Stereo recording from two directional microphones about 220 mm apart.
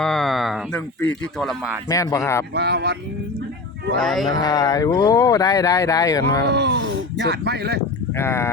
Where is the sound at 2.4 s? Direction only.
50° right (ahead or behind).